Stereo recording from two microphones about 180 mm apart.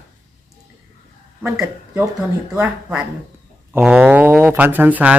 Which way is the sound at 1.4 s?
10° right (ahead or behind).